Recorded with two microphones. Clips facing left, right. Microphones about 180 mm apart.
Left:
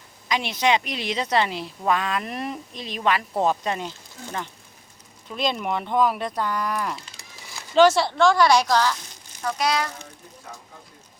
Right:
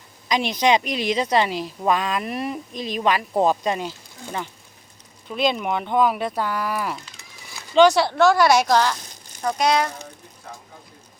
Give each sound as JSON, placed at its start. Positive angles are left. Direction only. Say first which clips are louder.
{"t": 0.3, "sound": "a woman's voice", "louder": "right 3 dB", "side_deg": -15}
{"t": 9.5, "sound": "speech", "louder": "right 4 dB", "side_deg": -45}